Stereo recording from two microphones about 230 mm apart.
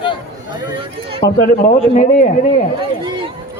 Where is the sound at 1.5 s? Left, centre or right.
Left.